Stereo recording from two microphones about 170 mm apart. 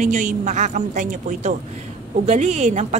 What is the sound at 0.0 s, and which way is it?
A woman's voice, 50° right (ahead or behind).